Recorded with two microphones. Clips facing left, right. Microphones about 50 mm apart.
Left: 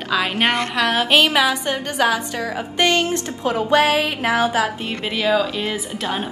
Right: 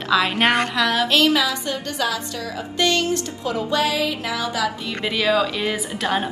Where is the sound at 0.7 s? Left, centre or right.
Left.